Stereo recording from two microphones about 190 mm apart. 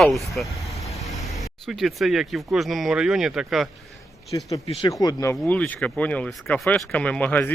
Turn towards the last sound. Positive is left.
turn(degrees=10)  # may be behind; listen again after turning